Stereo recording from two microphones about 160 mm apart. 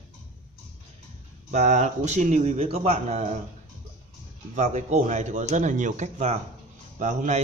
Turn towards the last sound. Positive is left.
turn(degrees=-45)  # may be behind; listen again after turning